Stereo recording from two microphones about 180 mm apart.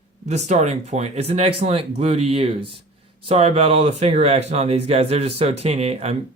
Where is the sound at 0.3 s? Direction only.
40° right (ahead or behind).